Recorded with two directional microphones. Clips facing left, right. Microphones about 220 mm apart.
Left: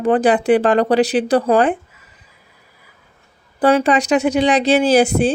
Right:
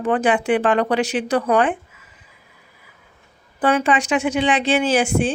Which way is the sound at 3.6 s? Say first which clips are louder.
Left 4 dB; 35° left (ahead or behind).